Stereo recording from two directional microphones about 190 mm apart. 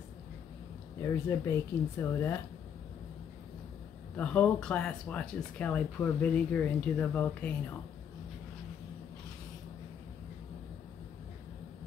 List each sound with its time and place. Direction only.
1.0 s speech: 15° left (ahead or behind)
4.2 s speech: 5° left (ahead or behind)